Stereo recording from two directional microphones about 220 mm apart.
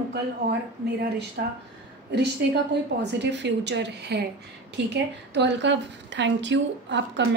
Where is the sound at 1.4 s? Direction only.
50° right (ahead or behind).